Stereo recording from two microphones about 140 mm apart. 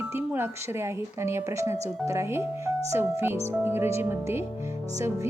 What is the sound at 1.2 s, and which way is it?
Speech, 20° right (ahead or behind).